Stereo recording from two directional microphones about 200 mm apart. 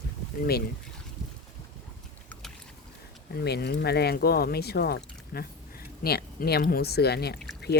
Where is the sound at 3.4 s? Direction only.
55° left (ahead or behind).